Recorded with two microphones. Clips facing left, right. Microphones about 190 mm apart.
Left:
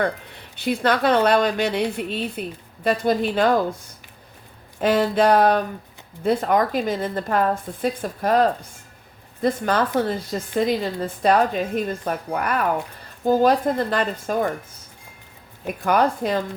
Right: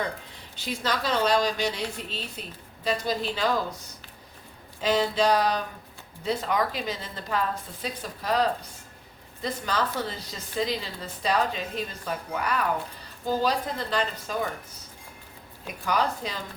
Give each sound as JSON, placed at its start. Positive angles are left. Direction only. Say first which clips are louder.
{"t": 0.5, "sound": "a woman's voice", "louder": "left 9 dB", "side_deg": 60}
{"t": 4.8, "sound": "a woman's voice", "louder": "left 6 dB", "side_deg": 55}
{"t": 15.6, "sound": "a woman's voice", "louder": "left 7 dB", "side_deg": 55}